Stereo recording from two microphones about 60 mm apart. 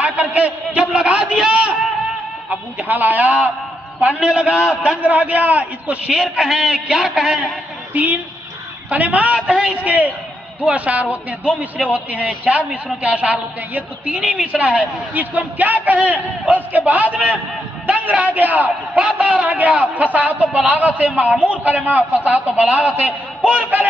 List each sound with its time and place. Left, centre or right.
0.0 s a man's voice: right
1.5 s a sound: right
2.5 s a man's voice: right
4.2 s a man's voice: centre
6.1 s a man's voice: centre
7.9 s a woman's voice: right